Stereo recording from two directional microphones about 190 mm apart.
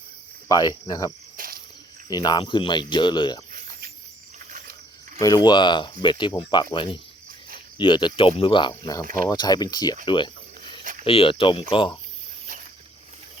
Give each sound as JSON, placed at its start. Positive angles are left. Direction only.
{"t": 0.4, "sound": "cricket", "side_deg": 20}
{"t": 0.9, "sound": "speech", "side_deg": 20}
{"t": 1.4, "sound": "cricket", "side_deg": -50}
{"t": 2.0, "sound": "speech", "side_deg": 20}
{"t": 3.5, "sound": "a sound", "side_deg": -45}
{"t": 5.2, "sound": "speech", "side_deg": 20}